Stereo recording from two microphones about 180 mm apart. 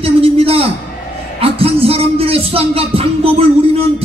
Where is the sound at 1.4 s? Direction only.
35° right (ahead or behind).